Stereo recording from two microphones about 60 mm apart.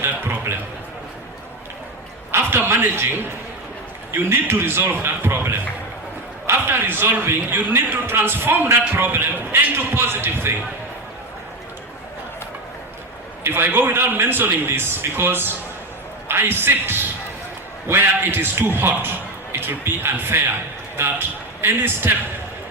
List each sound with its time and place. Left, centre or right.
0.0 s a sound: right
2.3 s a man's voice: right
4.1 s a man's voice: right
6.7 s a man's voice: right
13.4 s a man's voice: right